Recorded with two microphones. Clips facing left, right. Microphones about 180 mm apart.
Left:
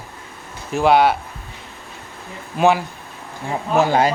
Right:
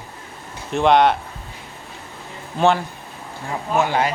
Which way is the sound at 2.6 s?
10° left (ahead or behind).